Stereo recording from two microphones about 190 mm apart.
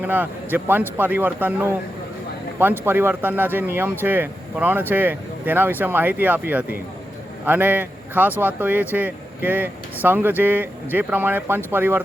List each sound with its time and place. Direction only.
0.0 s speech: 10° right (ahead or behind)